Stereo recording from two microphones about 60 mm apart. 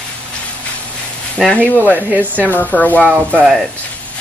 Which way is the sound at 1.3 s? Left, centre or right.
Centre.